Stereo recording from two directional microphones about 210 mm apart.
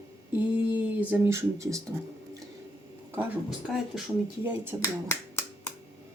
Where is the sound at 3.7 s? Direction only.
Centre (ahead or behind).